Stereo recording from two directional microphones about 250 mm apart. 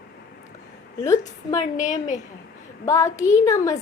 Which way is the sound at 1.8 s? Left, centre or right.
Left.